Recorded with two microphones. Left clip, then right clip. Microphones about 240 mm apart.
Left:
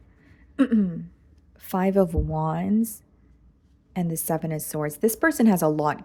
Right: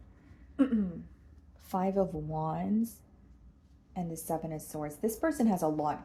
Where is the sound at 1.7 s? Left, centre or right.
Left.